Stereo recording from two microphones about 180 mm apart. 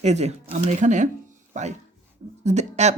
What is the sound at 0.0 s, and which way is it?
Speech, 40° right (ahead or behind).